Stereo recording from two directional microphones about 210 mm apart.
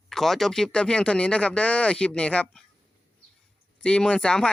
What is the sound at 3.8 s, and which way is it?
Speech, 5° left (ahead or behind).